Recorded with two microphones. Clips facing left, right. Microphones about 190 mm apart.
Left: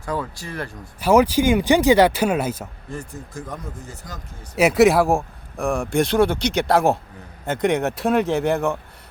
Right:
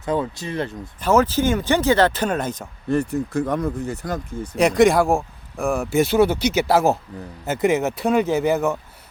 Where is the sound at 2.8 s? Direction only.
70° right (ahead or behind).